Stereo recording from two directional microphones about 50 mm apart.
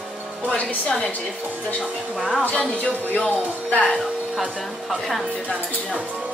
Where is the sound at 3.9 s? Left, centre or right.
Centre.